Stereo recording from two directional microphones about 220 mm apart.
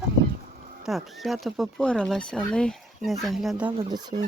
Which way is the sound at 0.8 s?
Centre (ahead or behind).